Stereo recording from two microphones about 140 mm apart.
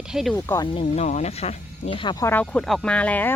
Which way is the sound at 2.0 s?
35° left (ahead or behind).